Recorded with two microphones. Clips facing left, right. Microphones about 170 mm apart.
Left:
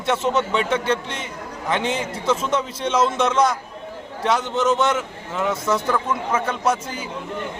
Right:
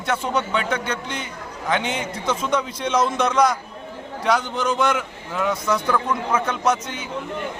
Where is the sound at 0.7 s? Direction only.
30° left (ahead or behind).